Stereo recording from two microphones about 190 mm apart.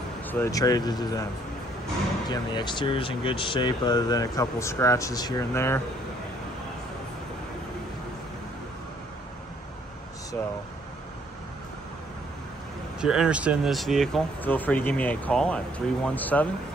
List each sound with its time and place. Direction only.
0.3 s speech: 15° left (ahead or behind)
2.2 s speech: 20° left (ahead or behind)
13.0 s speech: 5° right (ahead or behind)